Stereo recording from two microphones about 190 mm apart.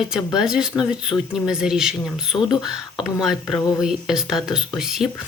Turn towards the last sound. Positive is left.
turn(degrees=0)  # may be behind; listen again after turning